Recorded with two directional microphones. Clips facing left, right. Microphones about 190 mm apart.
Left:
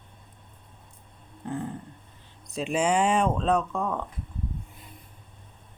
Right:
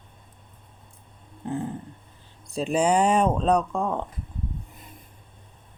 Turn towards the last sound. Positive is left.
turn(degrees=-30)  # may be behind; listen again after turning